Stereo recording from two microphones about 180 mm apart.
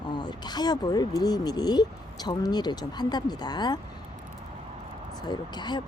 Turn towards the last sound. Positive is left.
turn(degrees=25)  # may be behind; listen again after turning